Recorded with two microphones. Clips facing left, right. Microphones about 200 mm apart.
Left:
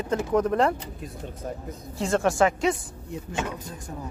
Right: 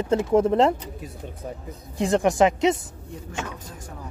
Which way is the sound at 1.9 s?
15° right (ahead or behind).